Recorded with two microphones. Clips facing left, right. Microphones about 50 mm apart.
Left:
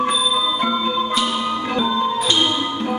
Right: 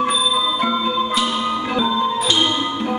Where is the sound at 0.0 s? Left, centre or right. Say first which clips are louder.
Right 1 dB; centre.